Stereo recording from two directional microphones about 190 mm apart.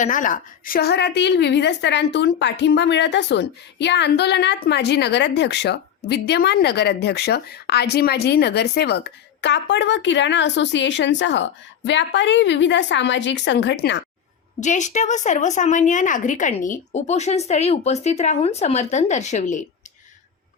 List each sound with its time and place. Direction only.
0.0 s a woman's voice: 45° left (ahead or behind); by 14.0 s 65° left (ahead or behind)
14.6 s speech: 40° left (ahead or behind)